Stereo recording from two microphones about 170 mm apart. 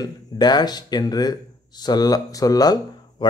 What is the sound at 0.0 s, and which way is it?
Speech, 25° left (ahead or behind).